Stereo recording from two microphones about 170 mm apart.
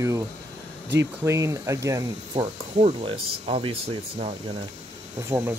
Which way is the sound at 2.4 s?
40° right (ahead or behind).